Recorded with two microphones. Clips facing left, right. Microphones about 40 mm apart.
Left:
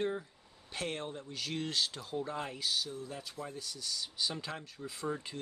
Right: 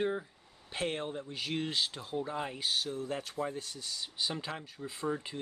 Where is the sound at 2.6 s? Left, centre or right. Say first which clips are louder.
Right 2 dB; right.